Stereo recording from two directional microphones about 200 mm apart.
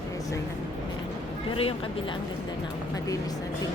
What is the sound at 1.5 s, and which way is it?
Speech, 25° left (ahead or behind).